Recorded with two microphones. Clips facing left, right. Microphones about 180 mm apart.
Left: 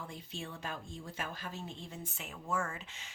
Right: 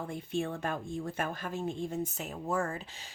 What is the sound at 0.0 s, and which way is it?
Speech, 55° right (ahead or behind).